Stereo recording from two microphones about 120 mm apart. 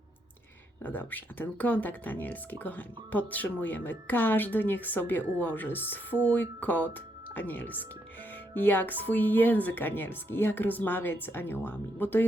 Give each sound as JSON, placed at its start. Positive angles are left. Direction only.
{"t": 0.8, "sound": "speech", "side_deg": 15}